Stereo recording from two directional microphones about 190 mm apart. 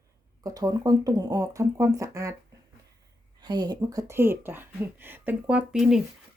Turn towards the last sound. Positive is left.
turn(degrees=-5)  # may be behind; listen again after turning